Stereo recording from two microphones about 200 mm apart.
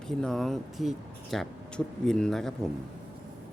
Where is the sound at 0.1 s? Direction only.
Centre (ahead or behind).